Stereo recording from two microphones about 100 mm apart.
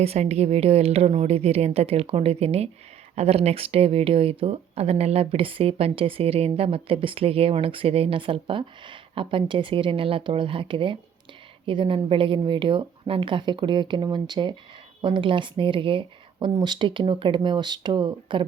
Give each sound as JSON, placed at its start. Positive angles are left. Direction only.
{"t": 0.0, "sound": "a woman's voice", "side_deg": -90}